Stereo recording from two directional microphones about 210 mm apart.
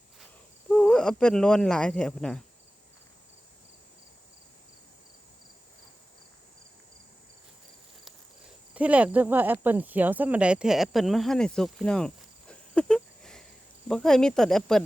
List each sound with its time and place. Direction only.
0.7 s speech: 5° left (ahead or behind)
8.7 s speech: 5° right (ahead or behind)